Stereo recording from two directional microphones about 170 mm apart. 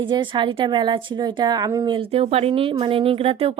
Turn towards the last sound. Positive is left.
turn(degrees=-35)  # may be behind; listen again after turning